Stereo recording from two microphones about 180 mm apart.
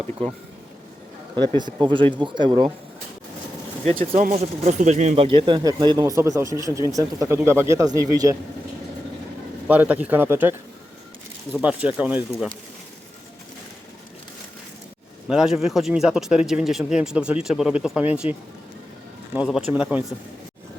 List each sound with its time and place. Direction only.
1.4 s speech: 25° right (ahead or behind)
4.1 s speech: 35° right (ahead or behind); by 8.4 s 20° right (ahead or behind)
9.6 s speech: 10° right (ahead or behind)
11.5 s speech: 5° right (ahead or behind)
15.3 s speech: centre (ahead or behind)